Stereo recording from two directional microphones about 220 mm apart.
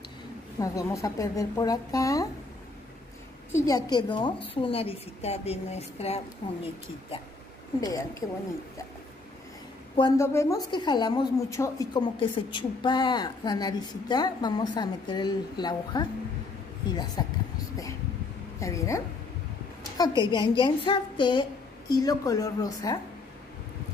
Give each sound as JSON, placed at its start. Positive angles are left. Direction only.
{"t": 0.6, "sound": "a woman's voice", "side_deg": 15}
{"t": 3.5, "sound": "a woman's voice", "side_deg": 15}
{"t": 7.8, "sound": "a woman's voice", "side_deg": 15}
{"t": 9.9, "sound": "a woman's voice", "side_deg": 15}
{"t": 18.6, "sound": "a woman's voice", "side_deg": 15}
{"t": 20.2, "sound": "a woman's voice", "side_deg": 20}